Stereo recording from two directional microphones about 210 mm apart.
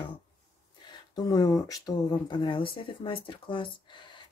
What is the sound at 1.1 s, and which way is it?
Speech, 20° left (ahead or behind).